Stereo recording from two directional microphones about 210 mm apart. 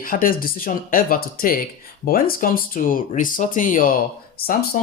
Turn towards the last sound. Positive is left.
turn(degrees=45)  # may be behind; listen again after turning